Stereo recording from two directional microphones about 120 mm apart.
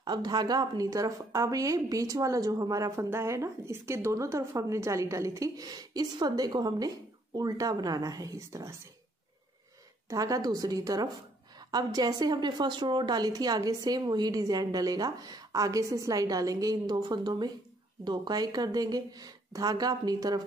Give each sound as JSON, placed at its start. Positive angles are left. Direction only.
{"t": 0.0, "sound": "a woman's voice", "side_deg": -35}
{"t": 10.0, "sound": "a woman's voice", "side_deg": -30}